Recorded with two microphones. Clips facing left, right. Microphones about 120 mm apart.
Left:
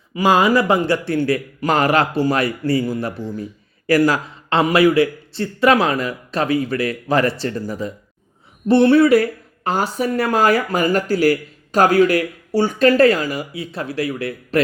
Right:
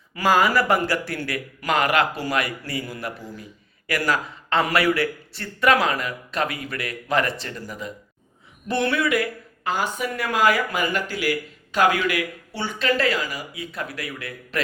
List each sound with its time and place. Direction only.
0.1 s speech: 20° left (ahead or behind)